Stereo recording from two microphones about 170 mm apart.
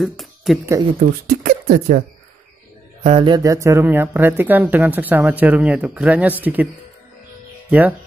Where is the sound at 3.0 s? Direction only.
30° right (ahead or behind); by 6.6 s 10° right (ahead or behind).